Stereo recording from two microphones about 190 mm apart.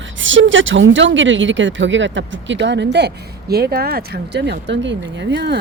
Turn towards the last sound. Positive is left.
turn(degrees=-65)  # may be behind; listen again after turning